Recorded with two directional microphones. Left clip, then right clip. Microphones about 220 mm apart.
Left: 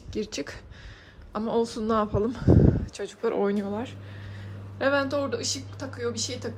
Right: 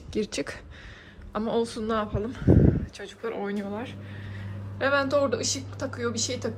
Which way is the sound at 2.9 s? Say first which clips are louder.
Left 6 dB; 20° left (ahead or behind).